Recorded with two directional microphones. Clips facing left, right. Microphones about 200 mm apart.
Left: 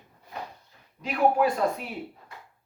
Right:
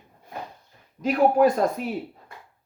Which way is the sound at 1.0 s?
45° right (ahead or behind).